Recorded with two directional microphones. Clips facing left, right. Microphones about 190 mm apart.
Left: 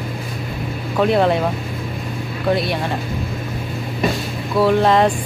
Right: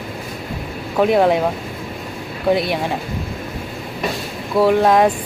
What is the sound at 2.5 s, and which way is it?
Speech, 15° right (ahead or behind).